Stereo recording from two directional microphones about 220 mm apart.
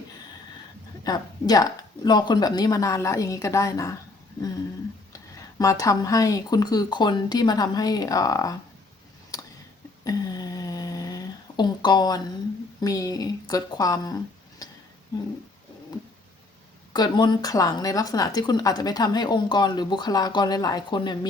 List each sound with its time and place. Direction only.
1.0 s a woman's voice: 15° left (ahead or behind)
5.1 s speech: 15° left (ahead or behind)
10.0 s a sound: 15° left (ahead or behind)
12.8 s speech: 15° left (ahead or behind)
16.9 s a woman's voice: 20° left (ahead or behind)